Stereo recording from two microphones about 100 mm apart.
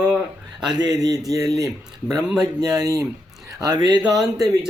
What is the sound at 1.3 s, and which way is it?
A man's voice, 35° right (ahead or behind).